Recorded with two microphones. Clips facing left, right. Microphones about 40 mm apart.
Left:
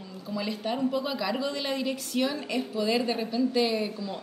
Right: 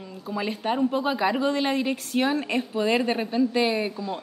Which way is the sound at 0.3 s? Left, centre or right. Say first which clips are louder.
Right 4 dB; right.